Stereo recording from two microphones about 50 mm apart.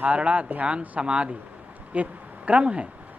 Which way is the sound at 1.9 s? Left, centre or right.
Right.